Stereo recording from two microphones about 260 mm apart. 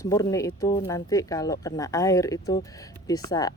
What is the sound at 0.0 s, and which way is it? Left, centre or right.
Speech, centre.